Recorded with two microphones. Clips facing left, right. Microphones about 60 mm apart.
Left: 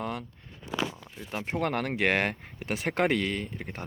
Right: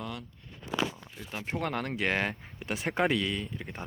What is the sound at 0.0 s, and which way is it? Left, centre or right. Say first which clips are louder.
Crumpling: left 5 dB; left.